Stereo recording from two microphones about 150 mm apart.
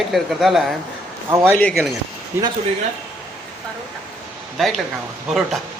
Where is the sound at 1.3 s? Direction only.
25° right (ahead or behind).